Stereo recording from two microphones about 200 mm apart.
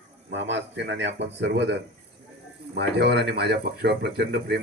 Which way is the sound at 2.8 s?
55° right (ahead or behind).